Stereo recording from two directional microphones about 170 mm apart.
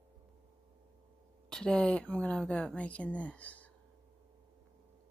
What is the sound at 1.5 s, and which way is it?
A woman's voice, 5° left (ahead or behind).